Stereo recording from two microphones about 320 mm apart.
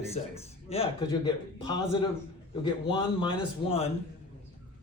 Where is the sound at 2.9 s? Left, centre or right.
Centre.